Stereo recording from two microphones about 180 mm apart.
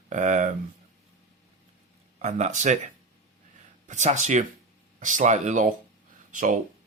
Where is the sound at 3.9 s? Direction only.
40° right (ahead or behind).